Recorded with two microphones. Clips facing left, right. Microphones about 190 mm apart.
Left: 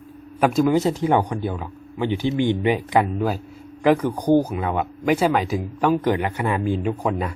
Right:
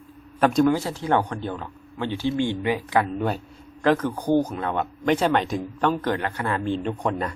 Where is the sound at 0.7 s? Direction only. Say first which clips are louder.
Left 4 dB; 20° left (ahead or behind).